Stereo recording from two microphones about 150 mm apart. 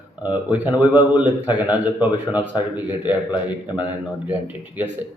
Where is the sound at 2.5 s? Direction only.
30° left (ahead or behind).